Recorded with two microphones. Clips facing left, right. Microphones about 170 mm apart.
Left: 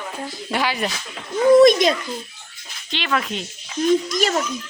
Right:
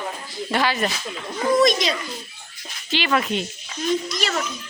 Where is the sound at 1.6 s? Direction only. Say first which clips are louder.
Left 5 dB; 55° left (ahead or behind).